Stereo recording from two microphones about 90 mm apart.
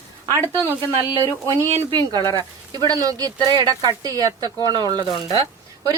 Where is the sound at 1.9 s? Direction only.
50° right (ahead or behind).